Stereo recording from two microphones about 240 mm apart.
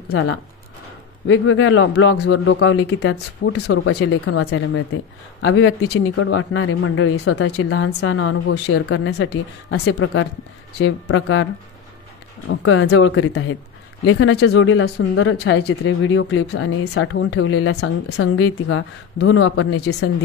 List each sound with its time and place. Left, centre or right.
0.1 s speech: left
3.6 s speech: left
7.4 s a woman's voice: left
10.8 s speech: left
12.4 s speech: left
18.4 s a woman's voice: left
19.5 s speech: left